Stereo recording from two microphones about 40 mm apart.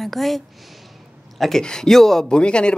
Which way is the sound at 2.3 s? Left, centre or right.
Left.